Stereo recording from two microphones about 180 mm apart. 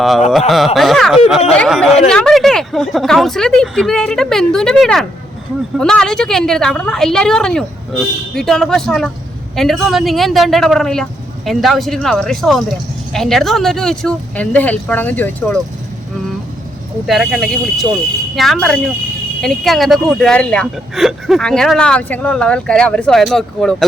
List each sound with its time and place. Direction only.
0.3 s speech: centre (ahead or behind)
17.1 s speech: centre (ahead or behind)